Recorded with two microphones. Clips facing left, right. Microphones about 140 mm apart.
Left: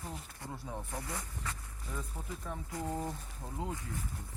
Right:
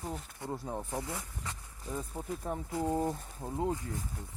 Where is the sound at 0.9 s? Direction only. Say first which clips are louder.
Right 3 dB; 20° right (ahead or behind).